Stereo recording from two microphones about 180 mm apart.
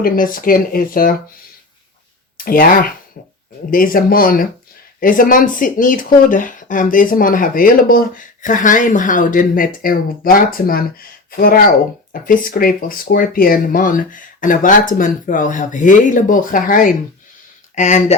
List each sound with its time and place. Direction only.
0.0 s speech: 50° left (ahead or behind)
2.4 s speech: 50° left (ahead or behind)